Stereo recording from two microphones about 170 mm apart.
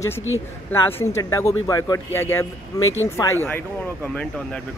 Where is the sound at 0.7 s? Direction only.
15° left (ahead or behind).